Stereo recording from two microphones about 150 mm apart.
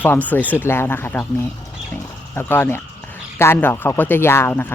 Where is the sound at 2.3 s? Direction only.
15° left (ahead or behind).